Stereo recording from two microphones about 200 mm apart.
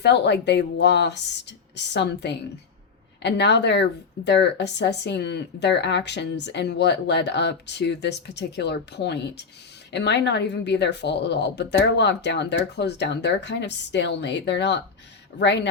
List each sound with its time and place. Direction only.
0.0 s speech: 60° left (ahead or behind)